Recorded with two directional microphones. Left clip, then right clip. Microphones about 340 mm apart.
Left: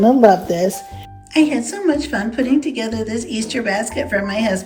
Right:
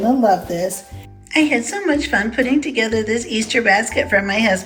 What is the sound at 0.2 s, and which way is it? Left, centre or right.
Speech, left.